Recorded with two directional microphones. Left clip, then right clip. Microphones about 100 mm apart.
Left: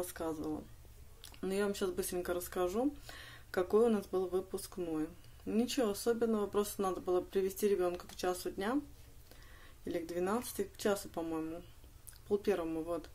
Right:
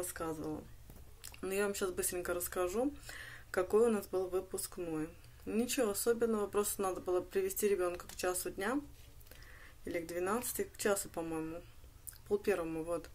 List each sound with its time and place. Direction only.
0.0 s speech: 15° left (ahead or behind)
1.2 s a sound: 15° left (ahead or behind)
1.8 s speech: 15° left (ahead or behind)
7.2 s speech: 15° left (ahead or behind)
9.8 s speech: 15° left (ahead or behind)